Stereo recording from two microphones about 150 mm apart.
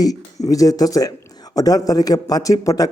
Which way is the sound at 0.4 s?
25° left (ahead or behind).